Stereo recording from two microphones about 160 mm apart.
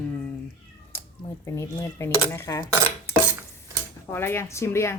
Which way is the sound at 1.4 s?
20° left (ahead or behind).